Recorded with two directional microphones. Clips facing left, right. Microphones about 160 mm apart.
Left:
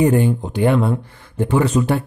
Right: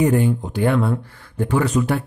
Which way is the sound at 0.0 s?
25° left (ahead or behind).